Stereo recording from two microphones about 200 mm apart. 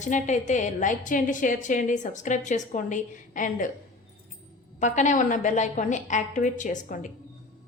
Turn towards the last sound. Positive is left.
turn(degrees=40)  # may be behind; listen again after turning